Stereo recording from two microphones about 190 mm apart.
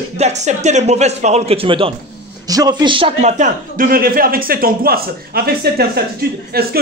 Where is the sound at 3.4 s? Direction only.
50° right (ahead or behind).